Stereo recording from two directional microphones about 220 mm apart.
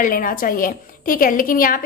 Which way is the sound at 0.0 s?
40° left (ahead or behind).